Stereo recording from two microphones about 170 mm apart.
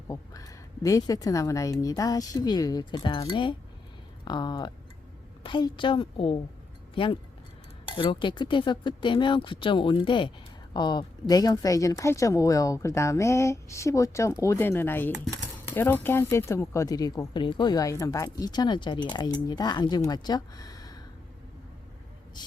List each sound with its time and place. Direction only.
0.1 s speech: 20° left (ahead or behind)